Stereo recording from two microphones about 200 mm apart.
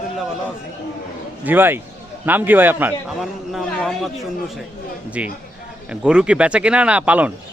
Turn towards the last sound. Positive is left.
turn(degrees=-5)  # may be behind; listen again after turning